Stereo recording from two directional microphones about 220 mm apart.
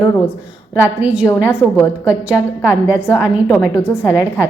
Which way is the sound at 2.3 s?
10° right (ahead or behind).